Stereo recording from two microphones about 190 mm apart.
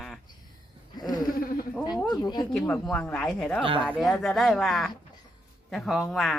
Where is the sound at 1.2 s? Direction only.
50° left (ahead or behind).